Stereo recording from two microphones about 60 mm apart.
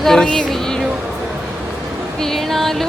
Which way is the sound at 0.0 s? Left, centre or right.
Centre.